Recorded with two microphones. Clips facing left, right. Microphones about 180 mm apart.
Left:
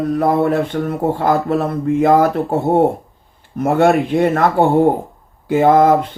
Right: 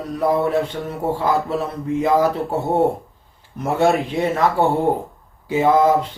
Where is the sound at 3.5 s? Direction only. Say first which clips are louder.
Left 5 dB; 55° left (ahead or behind).